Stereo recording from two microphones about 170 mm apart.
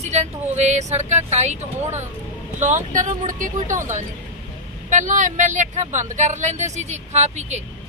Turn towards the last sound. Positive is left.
turn(degrees=-40)  # may be behind; listen again after turning